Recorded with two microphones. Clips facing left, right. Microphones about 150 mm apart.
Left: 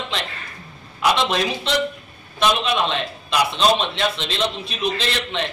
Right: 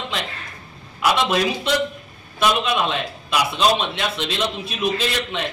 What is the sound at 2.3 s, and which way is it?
A man's voice, 10° right (ahead or behind).